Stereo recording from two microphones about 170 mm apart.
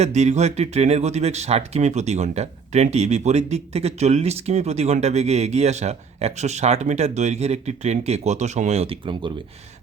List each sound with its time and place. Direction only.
0.0 s speech: 40° right (ahead or behind)